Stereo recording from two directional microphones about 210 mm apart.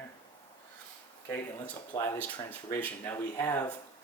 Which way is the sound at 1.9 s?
10° left (ahead or behind).